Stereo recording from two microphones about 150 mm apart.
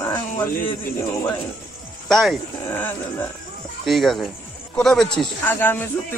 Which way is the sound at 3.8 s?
Centre (ahead or behind).